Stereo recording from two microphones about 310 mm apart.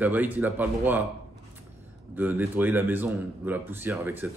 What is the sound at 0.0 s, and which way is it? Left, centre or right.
A man's voice, centre.